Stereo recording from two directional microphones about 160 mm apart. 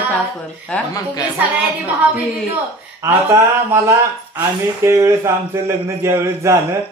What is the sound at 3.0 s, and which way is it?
Speech, 15° right (ahead or behind).